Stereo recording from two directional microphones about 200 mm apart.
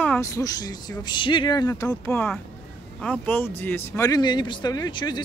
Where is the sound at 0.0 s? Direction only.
10° left (ahead or behind).